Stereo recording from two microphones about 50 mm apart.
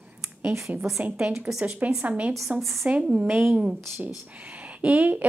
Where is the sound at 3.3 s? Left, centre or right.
Right.